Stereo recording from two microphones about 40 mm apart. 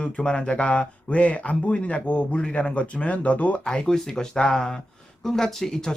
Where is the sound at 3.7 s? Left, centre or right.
Centre.